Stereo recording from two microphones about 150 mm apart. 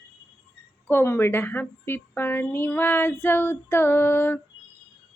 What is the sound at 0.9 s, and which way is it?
A woman's voice, 15° left (ahead or behind).